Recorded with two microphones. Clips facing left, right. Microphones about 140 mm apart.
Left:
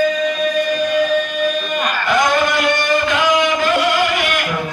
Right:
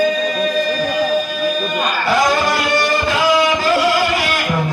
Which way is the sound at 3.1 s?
35° right (ahead or behind).